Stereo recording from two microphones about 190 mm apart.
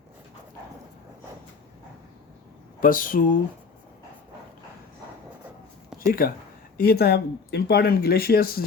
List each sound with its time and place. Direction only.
2.8 s speech: 45° left (ahead or behind)
5.9 s a sound: centre (ahead or behind)
6.8 s speech: 55° left (ahead or behind)